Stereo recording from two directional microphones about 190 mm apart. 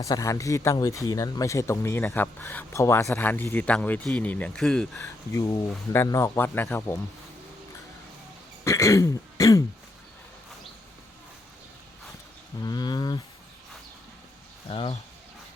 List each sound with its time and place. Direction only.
0.0 s speech: 15° left (ahead or behind)
4.9 s speech: 15° left (ahead or behind)
8.6 s throat clearing: 15° left (ahead or behind)
12.6 s speech: 20° left (ahead or behind)
14.7 s speech: 30° left (ahead or behind)